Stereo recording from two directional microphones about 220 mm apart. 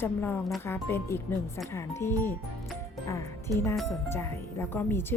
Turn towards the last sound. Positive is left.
turn(degrees=10)  # may be behind; listen again after turning